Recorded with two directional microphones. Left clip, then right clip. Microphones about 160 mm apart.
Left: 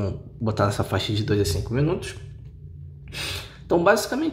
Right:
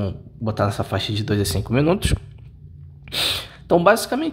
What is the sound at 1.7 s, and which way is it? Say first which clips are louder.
Speech: right 6 dB; 35° right (ahead or behind).